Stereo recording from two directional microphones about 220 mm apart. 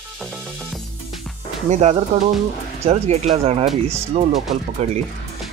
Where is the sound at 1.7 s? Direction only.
30° right (ahead or behind).